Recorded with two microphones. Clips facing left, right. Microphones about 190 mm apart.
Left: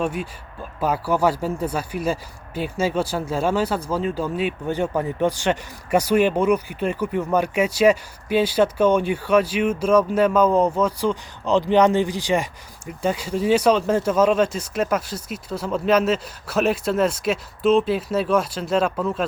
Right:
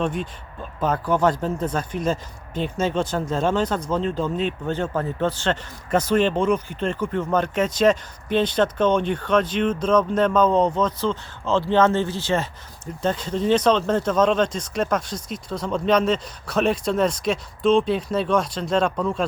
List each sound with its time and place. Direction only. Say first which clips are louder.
0.0 s speech: even; 5° left (ahead or behind)